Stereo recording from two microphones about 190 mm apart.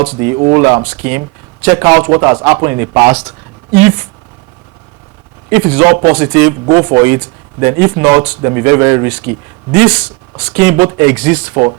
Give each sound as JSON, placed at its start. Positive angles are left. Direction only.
{"t": 0.0, "sound": "speech", "side_deg": -30}
{"t": 0.5, "sound": "a man's voice", "side_deg": -20}
{"t": 5.5, "sound": "a man's voice", "side_deg": -10}